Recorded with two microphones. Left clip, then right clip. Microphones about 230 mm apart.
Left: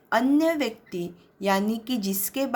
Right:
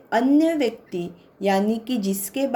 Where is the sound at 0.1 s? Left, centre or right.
Left.